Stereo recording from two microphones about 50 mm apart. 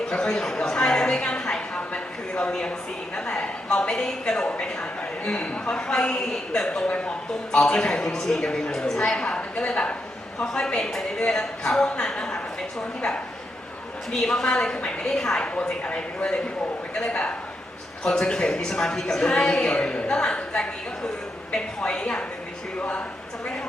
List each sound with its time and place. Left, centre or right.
0.1 s a woman's voice: centre
1.9 s a sound: left
2.5 s a woman's voice: centre
14.4 s a woman's voice: centre
15.4 s a woman's voice: left
22.8 s speech: left